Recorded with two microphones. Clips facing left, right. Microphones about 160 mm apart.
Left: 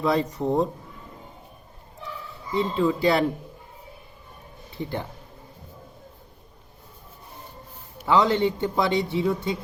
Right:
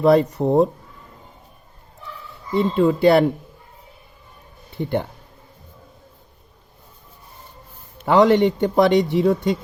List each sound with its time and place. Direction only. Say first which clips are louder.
0.0 s a man's voice: right 8 dB; 60° right (ahead or behind)
2.6 s a man's voice: right 5 dB; 55° right (ahead or behind)
4.8 s a man's voice: right 7 dB; 60° right (ahead or behind)
8.0 s a man's voice: right 6 dB; 65° right (ahead or behind)